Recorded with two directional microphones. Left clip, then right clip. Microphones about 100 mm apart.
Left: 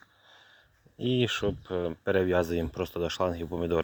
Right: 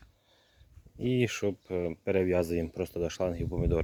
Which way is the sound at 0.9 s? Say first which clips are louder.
Left 1 dB; 15° right (ahead or behind).